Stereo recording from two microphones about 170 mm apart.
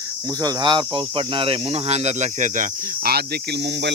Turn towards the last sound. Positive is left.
turn(degrees=-90)